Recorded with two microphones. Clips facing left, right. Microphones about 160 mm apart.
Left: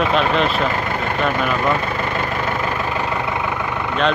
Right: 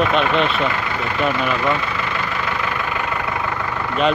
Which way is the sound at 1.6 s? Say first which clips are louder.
Left 1 dB; 45° left (ahead or behind).